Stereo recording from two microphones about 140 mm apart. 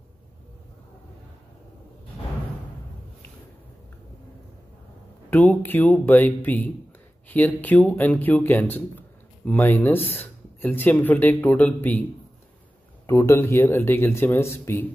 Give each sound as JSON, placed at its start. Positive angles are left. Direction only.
{"t": 5.3, "sound": "speech", "side_deg": 10}
{"t": 13.0, "sound": "speech", "side_deg": 20}